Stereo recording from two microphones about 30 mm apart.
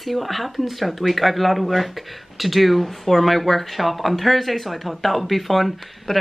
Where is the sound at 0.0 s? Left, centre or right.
Centre.